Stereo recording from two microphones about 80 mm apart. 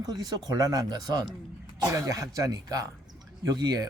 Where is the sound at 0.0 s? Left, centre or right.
Right.